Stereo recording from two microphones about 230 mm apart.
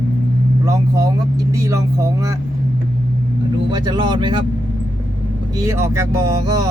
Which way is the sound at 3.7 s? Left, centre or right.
Centre.